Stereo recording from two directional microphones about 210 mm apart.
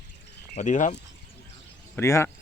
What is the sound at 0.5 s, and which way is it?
Speech, 35° left (ahead or behind).